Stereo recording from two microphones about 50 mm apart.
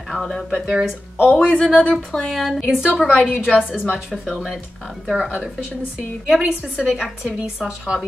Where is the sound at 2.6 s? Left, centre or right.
Centre.